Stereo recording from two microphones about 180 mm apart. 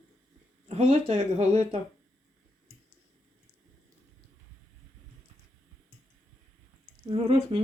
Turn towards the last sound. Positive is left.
turn(degrees=-30)  # may be behind; listen again after turning